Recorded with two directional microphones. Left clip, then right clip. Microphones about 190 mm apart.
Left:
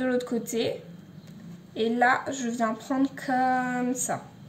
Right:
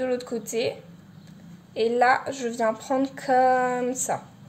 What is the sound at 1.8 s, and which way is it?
A woman's voice, 40° right (ahead or behind).